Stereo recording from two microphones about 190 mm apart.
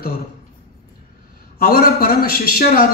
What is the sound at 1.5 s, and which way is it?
A man's voice, 50° left (ahead or behind).